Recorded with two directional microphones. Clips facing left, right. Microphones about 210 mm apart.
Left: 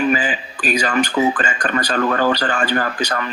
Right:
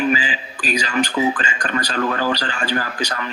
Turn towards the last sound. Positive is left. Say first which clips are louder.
# left 3 dB
turn(degrees=55)  # may be behind; listen again after turning